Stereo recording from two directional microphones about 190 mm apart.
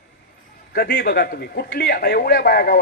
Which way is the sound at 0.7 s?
50° left (ahead or behind).